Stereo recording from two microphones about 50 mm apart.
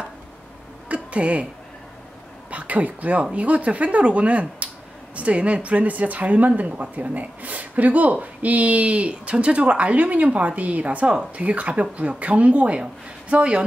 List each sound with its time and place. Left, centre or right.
0.8 s music: right
2.5 s a woman's voice: right